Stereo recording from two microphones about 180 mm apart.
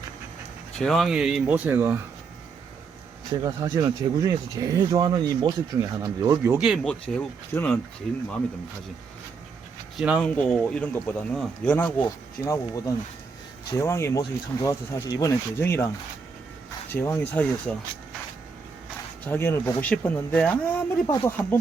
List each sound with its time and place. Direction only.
0.8 s speech: centre (ahead or behind)
3.4 s speech: 20° right (ahead or behind)
6.6 s speech: centre (ahead or behind)
10.0 s speech: 5° right (ahead or behind)
10.2 s speech: 5° left (ahead or behind)
16.9 s speech: 10° left (ahead or behind)
19.2 s speech: 10° left (ahead or behind)